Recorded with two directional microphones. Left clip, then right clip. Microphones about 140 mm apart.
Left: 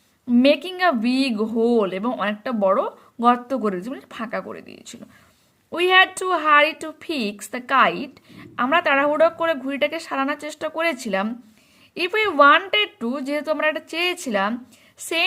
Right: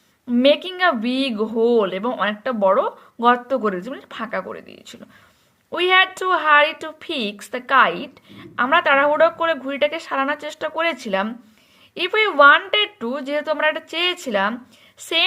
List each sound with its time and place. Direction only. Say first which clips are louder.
0.3 s a woman's voice: right 1 dB; 50° left (ahead or behind)